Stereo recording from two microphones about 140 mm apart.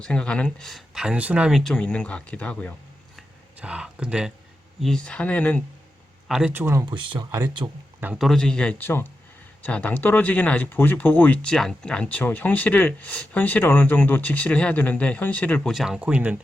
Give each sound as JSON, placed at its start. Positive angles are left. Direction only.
{"t": 0.0, "sound": "speech", "side_deg": 5}
{"t": 3.2, "sound": "a sound", "side_deg": -5}
{"t": 4.8, "sound": "speech", "side_deg": 5}
{"t": 6.2, "sound": "speech", "side_deg": -5}
{"t": 6.5, "sound": "speech", "side_deg": -15}
{"t": 6.9, "sound": "speech", "side_deg": -35}
{"t": 8.0, "sound": "speech", "side_deg": -5}
{"t": 15.7, "sound": "speech", "side_deg": -5}